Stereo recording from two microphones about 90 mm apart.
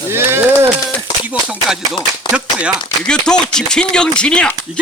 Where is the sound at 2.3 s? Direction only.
10° right (ahead or behind).